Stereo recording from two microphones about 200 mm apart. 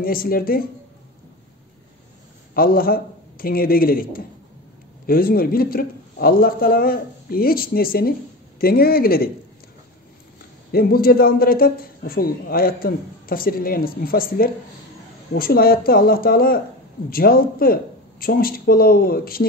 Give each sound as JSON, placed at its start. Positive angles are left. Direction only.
{"t": 0.0, "sound": "a man's voice", "side_deg": 45}
{"t": 2.5, "sound": "a man's voice", "side_deg": 45}
{"t": 10.7, "sound": "a man's voice", "side_deg": 50}